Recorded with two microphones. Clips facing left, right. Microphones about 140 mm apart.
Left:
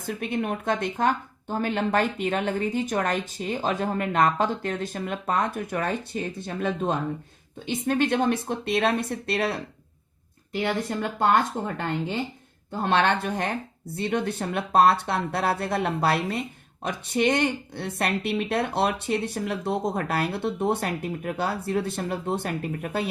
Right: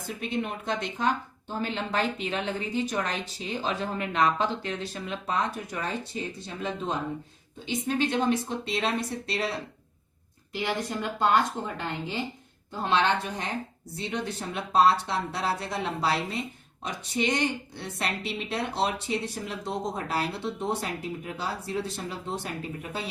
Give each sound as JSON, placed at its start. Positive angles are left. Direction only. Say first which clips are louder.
{"t": 0.0, "sound": "a woman's voice", "louder": "left 3 dB", "side_deg": 55}